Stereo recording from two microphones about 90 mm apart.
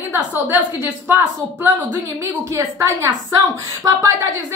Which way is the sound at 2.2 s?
35° right (ahead or behind).